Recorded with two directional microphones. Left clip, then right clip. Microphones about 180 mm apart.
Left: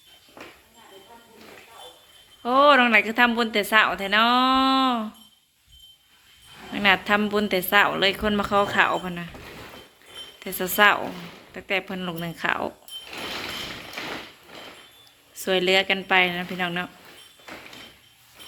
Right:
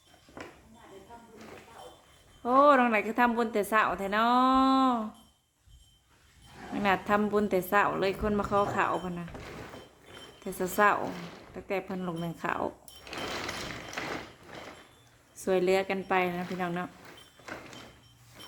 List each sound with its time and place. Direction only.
2.4 s speech: centre (ahead or behind)
6.7 s speech: centre (ahead or behind)
10.7 s speech: centre (ahead or behind)
15.4 s speech: centre (ahead or behind)